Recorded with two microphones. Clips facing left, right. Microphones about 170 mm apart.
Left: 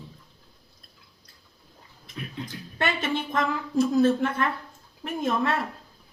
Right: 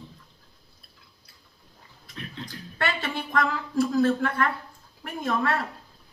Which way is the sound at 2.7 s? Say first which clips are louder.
Left 2 dB; 20° left (ahead or behind).